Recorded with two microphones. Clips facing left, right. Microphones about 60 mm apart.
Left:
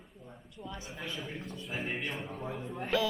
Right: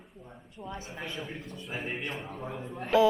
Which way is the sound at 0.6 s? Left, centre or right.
Right.